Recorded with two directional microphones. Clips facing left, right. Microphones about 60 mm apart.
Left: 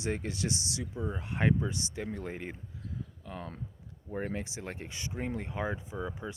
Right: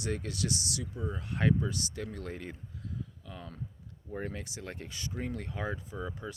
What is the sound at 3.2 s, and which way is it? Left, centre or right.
Speech, left.